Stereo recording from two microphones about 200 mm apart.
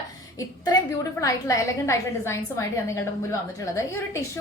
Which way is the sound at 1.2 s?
15° left (ahead or behind).